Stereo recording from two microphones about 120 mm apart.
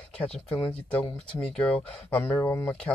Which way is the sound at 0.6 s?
10° left (ahead or behind).